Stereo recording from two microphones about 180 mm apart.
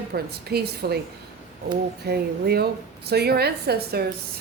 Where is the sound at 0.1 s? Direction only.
60° right (ahead or behind).